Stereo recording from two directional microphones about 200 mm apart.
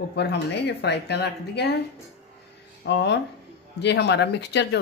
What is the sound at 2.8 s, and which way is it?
Speech, 60° left (ahead or behind).